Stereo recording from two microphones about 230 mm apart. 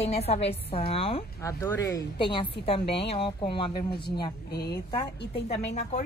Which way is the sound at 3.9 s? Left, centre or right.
Left.